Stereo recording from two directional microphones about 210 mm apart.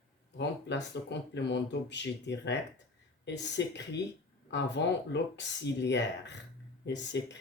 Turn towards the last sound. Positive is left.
turn(degrees=55)  # may be behind; listen again after turning